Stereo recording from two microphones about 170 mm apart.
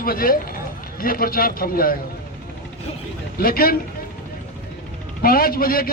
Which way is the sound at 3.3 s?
60° left (ahead or behind).